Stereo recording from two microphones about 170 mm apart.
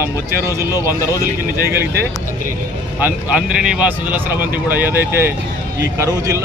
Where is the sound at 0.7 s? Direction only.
20° left (ahead or behind).